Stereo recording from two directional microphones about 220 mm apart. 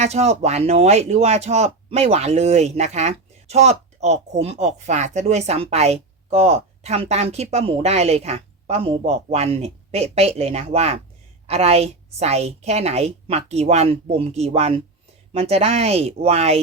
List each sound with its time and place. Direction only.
0.0 s speech: 30° right (ahead or behind)